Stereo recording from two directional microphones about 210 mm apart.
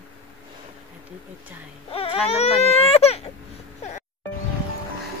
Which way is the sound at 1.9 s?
30° left (ahead or behind).